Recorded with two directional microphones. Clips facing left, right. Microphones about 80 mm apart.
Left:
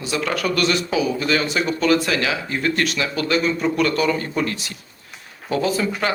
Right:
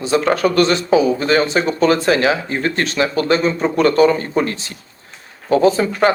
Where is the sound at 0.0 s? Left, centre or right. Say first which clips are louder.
Right 8 dB; right.